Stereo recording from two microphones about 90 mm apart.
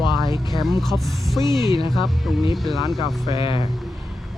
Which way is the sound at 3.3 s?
70° left (ahead or behind).